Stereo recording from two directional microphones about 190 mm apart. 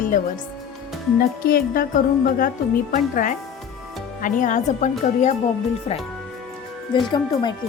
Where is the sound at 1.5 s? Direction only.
50° left (ahead or behind).